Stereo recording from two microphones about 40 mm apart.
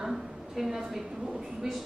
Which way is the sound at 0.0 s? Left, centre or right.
Centre.